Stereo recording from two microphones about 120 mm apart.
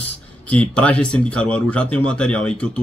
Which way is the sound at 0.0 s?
10° left (ahead or behind).